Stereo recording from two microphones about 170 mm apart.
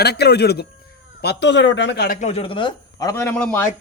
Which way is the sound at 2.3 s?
30° left (ahead or behind).